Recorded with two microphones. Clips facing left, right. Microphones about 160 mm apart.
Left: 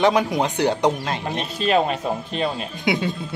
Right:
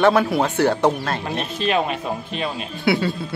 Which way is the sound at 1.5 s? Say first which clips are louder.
Left 2 dB; 35° left (ahead or behind).